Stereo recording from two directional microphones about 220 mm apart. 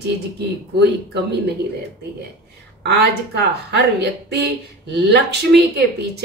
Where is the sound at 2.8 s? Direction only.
50° right (ahead or behind).